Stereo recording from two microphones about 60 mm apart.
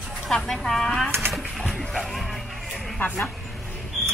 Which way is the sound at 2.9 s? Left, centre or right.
Left.